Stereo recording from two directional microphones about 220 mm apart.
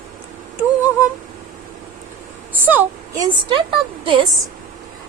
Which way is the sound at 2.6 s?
10° right (ahead or behind).